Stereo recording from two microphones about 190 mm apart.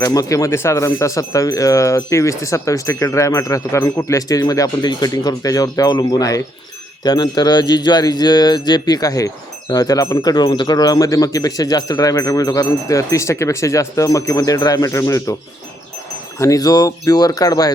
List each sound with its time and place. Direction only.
0.0 s speech: 20° left (ahead or behind)
16.4 s speech: 20° left (ahead or behind)